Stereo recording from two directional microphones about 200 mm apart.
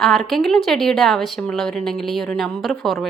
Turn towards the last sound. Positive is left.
turn(degrees=0)  # may be behind; listen again after turning